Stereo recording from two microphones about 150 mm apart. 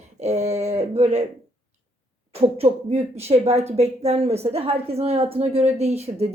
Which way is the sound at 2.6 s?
45° right (ahead or behind).